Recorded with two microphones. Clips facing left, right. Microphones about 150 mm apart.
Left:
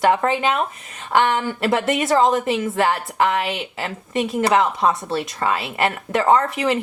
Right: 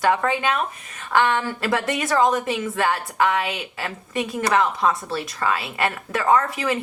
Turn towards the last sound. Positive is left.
turn(degrees=25)  # may be behind; listen again after turning